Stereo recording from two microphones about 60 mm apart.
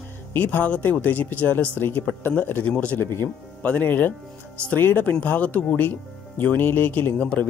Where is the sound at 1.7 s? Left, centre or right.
Left.